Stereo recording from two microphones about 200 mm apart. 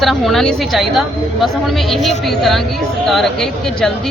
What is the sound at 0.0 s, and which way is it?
Speech, centre (ahead or behind).